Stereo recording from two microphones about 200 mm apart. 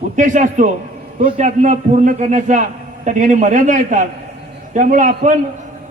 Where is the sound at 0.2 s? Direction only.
40° right (ahead or behind).